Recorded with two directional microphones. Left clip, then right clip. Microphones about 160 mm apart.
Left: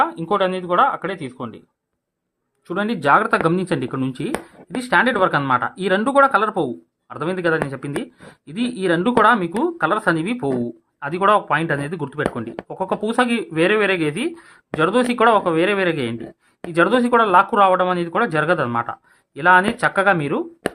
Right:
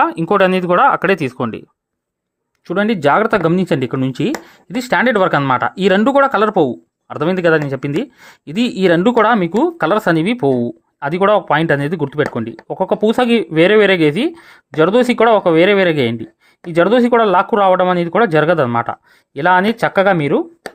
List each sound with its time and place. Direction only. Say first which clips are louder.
0.0 s speech: right 6 dB; 65° right (ahead or behind)
2.6 s speech: right 4 dB; 45° right (ahead or behind)
4.7 s speech: right 3 dB; 55° right (ahead or behind)
6.0 s speech: right 1 dB; 45° right (ahead or behind)